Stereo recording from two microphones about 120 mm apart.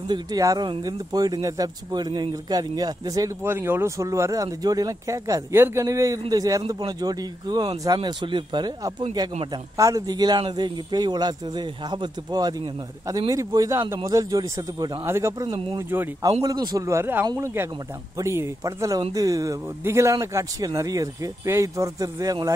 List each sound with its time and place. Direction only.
0.1 s speech: 30° right (ahead or behind)
3.4 s speech: 20° right (ahead or behind)
15.4 s speech: 45° right (ahead or behind)
16.4 s speech: 35° right (ahead or behind)